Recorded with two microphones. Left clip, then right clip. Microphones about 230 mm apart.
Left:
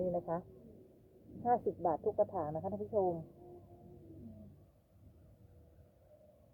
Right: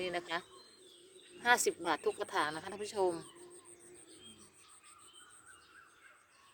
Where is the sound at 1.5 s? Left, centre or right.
Right.